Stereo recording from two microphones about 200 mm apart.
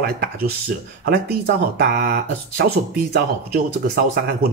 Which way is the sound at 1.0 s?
55° right (ahead or behind).